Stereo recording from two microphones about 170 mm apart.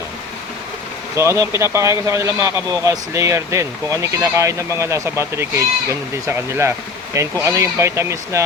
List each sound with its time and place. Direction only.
1.1 s speech: 15° right (ahead or behind)